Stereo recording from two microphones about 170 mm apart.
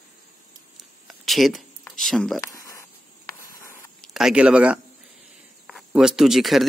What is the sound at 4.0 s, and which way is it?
Speech, centre (ahead or behind).